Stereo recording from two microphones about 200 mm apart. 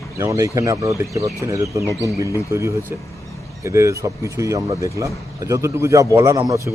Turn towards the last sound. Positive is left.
turn(degrees=-15)  # may be behind; listen again after turning